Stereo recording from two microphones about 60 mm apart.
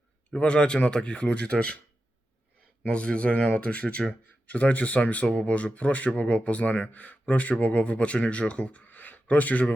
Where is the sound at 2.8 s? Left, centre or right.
Centre.